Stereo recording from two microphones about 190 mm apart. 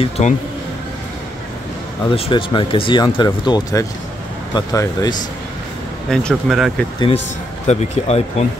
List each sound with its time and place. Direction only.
0.2 s speech: 35° left (ahead or behind)
2.0 s speech: 30° left (ahead or behind)
6.0 s speech: 5° left (ahead or behind)
7.6 s speech: 35° left (ahead or behind)